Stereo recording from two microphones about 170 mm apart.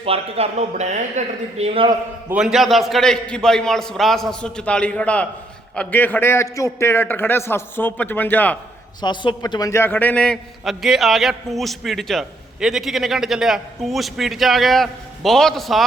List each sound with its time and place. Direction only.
0.0 s speech: 35° right (ahead or behind)
2.3 s a man's voice: 5° right (ahead or behind)
9.0 s a man's voice: 25° left (ahead or behind); by 15.8 s centre (ahead or behind)